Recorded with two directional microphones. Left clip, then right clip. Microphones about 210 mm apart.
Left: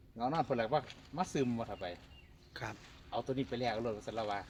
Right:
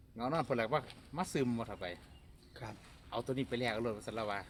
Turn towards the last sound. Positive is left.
turn(degrees=-5)  # may be behind; listen again after turning